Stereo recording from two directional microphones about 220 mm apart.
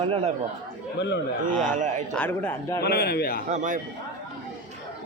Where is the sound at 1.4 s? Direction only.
35° right (ahead or behind).